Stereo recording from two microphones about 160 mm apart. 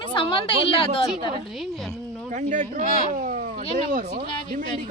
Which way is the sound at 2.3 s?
50° right (ahead or behind).